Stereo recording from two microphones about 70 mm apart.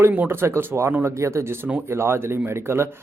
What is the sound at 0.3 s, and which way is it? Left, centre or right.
Speech, right.